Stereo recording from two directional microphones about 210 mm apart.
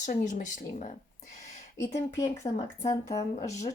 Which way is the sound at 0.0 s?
35° left (ahead or behind).